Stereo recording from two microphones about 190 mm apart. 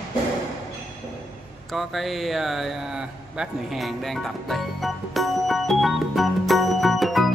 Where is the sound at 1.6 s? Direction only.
Centre (ahead or behind).